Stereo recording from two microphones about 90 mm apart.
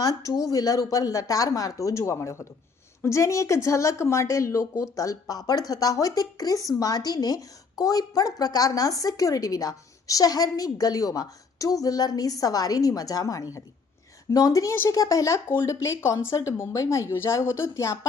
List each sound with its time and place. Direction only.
0.0 s a woman's voice: 40° left (ahead or behind)